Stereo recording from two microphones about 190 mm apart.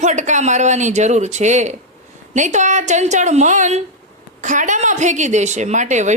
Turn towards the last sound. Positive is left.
turn(degrees=-40)  # may be behind; listen again after turning